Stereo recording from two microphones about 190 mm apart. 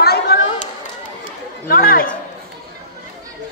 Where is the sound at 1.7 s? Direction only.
50° left (ahead or behind).